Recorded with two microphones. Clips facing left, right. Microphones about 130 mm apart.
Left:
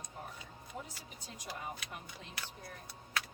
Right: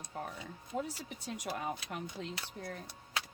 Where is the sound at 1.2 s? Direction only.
70° right (ahead or behind).